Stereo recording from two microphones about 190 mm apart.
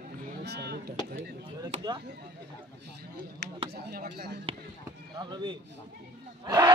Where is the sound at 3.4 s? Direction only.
60° right (ahead or behind).